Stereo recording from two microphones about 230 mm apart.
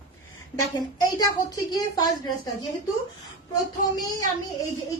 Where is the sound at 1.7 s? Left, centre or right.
Centre.